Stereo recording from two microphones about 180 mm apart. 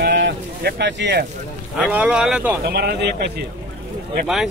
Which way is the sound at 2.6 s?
60° right (ahead or behind).